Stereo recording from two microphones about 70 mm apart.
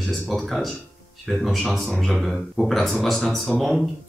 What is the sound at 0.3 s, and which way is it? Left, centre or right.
Speech, centre.